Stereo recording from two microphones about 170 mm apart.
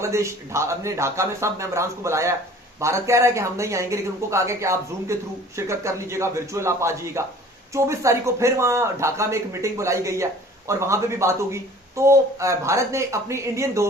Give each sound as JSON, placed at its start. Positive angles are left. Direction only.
{"t": 0.0, "sound": "speech", "side_deg": -15}